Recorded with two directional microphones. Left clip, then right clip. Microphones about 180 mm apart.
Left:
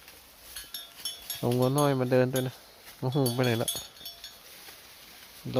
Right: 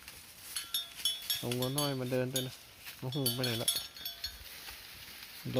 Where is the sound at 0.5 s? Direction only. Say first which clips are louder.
Right 4 dB; 10° right (ahead or behind).